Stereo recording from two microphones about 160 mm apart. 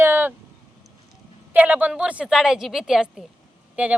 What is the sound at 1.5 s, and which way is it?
A woman's voice, 10° right (ahead or behind).